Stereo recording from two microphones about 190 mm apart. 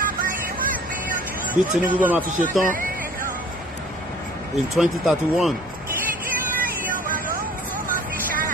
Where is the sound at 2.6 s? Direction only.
45° right (ahead or behind).